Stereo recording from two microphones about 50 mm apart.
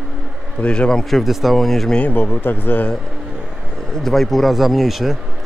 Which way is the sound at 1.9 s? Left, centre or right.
Left.